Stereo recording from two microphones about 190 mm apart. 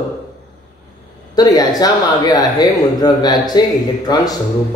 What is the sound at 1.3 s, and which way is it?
A man's voice, 20° left (ahead or behind).